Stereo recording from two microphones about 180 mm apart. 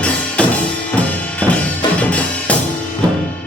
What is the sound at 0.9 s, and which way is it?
Drum, 5° left (ahead or behind).